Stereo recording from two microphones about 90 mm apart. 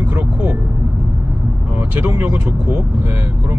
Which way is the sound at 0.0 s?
20° right (ahead or behind).